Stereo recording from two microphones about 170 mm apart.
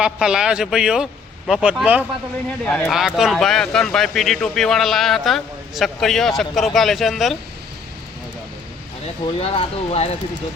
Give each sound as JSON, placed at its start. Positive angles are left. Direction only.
{"t": 0.0, "sound": "speech", "side_deg": -5}
{"t": 2.5, "sound": "speech", "side_deg": 5}
{"t": 9.2, "sound": "speech", "side_deg": 35}